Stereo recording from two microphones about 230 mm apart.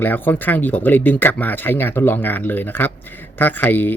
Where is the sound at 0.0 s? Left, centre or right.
Centre.